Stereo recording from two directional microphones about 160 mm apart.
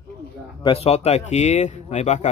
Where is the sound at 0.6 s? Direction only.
35° left (ahead or behind).